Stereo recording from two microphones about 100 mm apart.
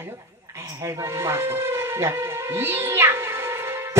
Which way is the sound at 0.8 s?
30° right (ahead or behind).